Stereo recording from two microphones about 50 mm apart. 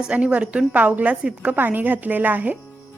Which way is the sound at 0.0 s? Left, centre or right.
Centre.